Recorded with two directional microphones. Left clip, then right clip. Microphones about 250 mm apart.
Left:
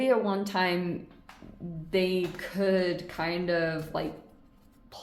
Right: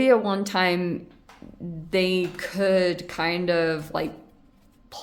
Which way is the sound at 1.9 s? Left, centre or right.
Right.